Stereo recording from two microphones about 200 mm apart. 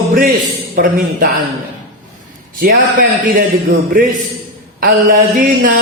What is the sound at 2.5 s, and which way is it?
Mantra, 45° right (ahead or behind).